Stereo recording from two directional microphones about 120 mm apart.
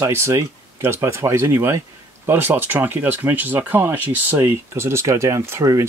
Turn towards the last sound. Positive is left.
turn(degrees=-25)  # may be behind; listen again after turning